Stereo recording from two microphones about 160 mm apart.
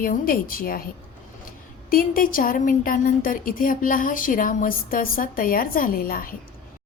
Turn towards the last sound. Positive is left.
turn(degrees=60)  # may be behind; listen again after turning